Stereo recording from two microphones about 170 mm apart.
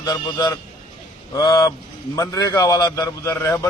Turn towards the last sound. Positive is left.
turn(degrees=20)  # may be behind; listen again after turning